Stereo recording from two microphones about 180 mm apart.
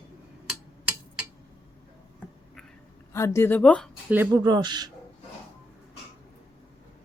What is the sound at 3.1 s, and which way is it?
Speech, 15° left (ahead or behind).